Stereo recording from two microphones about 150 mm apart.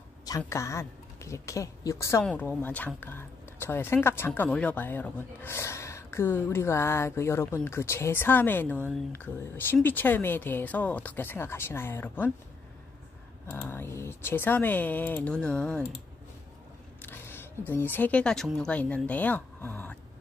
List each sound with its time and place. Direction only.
0.5 s speech: 20° left (ahead or behind)
2.2 s speech: 10° left (ahead or behind)
13.7 s speech: 15° left (ahead or behind)
17.0 s speech: 15° left (ahead or behind)